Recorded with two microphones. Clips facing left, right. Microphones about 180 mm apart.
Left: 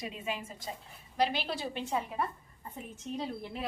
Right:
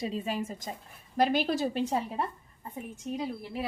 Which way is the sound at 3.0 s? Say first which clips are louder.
Right 3 dB; 5° right (ahead or behind).